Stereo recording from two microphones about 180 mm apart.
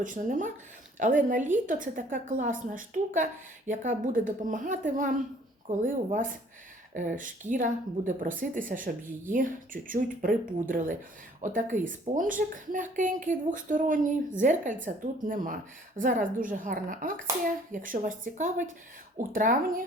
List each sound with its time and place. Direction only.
0.0 s a woman's voice: 45° right (ahead or behind)